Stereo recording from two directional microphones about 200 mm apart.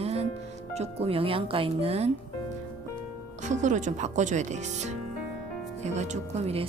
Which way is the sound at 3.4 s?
35° right (ahead or behind).